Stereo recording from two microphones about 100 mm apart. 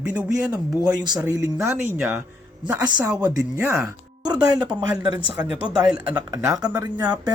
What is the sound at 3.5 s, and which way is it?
Speech, 25° right (ahead or behind).